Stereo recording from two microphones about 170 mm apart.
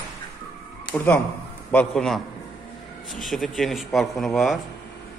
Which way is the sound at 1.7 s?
5° left (ahead or behind).